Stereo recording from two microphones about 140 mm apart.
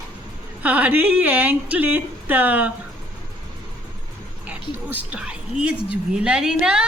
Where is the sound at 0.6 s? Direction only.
10° right (ahead or behind).